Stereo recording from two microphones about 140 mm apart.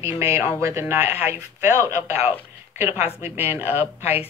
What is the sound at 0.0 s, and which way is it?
Speech, 15° right (ahead or behind).